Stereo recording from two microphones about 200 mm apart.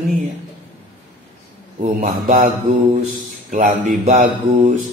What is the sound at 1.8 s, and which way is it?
Speech, 45° right (ahead or behind).